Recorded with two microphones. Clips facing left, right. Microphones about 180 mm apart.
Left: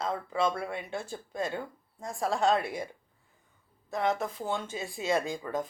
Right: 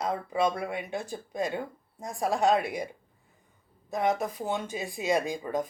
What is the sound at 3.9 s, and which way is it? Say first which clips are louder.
A woman's voice: right 2 dB; 15° right (ahead or behind).